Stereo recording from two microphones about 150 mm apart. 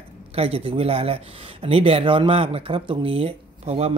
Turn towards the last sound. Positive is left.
turn(degrees=-40)  # may be behind; listen again after turning